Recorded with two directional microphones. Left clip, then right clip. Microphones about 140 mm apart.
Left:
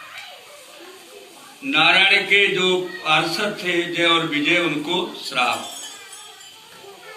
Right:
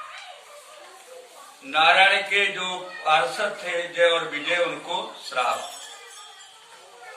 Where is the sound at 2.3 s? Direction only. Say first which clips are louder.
Left 7 dB; 5° left (ahead or behind).